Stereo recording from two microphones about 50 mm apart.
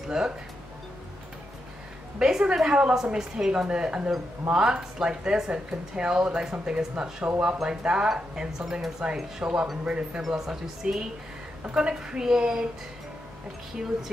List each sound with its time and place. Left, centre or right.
0.2 s speech: centre
2.1 s speech: centre
10.2 s speech: centre
11.6 s a woman's voice: right
11.9 s speech: centre